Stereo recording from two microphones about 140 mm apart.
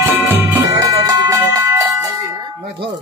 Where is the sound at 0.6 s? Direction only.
25° right (ahead or behind).